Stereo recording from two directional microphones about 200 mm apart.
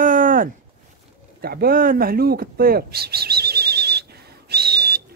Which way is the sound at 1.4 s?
50° right (ahead or behind).